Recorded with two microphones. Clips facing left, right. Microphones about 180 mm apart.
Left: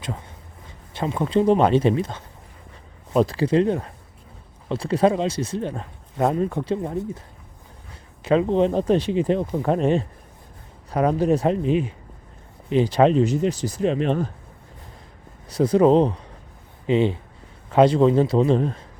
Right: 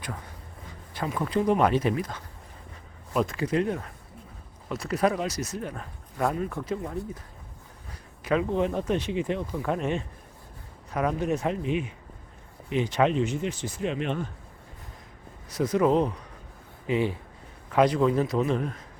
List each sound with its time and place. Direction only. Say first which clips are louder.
0.0 s speech: left 5 dB; 25° left (ahead or behind)
8.2 s speech: left 6 dB; 30° left (ahead or behind)
15.4 s speech: left 7 dB; 30° left (ahead or behind)